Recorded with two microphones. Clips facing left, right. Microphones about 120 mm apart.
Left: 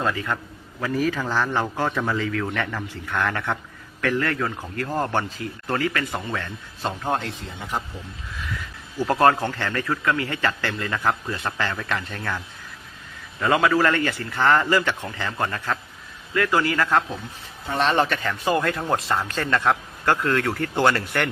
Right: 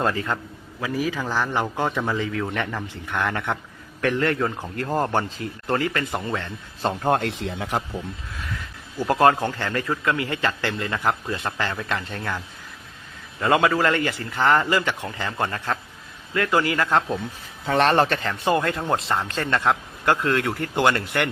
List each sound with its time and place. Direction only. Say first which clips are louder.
0.1 s a man's voice: right 1 dB; 30° right (ahead or behind)
0.8 s a man's voice: left 2 dB; 10° right (ahead or behind)
7.0 s speech: right 5 dB; 55° right (ahead or behind); by 7.8 s 80° right
9.0 s a man's voice: even; 20° right (ahead or behind)
13.4 s a man's voice: even; 25° right (ahead or behind)
17.8 s a man's voice: left 1 dB; 35° right (ahead or behind); by 21.2 s 20° right (ahead or behind)